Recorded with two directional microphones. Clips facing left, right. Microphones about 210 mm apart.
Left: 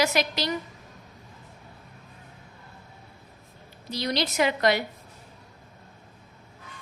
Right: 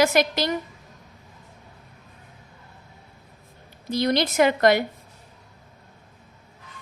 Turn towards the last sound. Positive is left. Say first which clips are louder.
# right 5 dB
turn(degrees=-50)  # may be behind; listen again after turning